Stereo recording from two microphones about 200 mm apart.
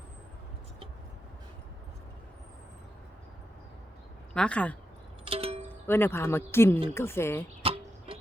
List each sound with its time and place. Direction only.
4.4 s speech: 5° left (ahead or behind)
5.2 s music: 30° right (ahead or behind)
5.9 s speech: 10° left (ahead or behind)
7.6 s music: 30° right (ahead or behind)